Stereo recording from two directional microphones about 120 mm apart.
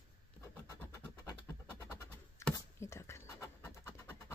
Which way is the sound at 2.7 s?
20° left (ahead or behind).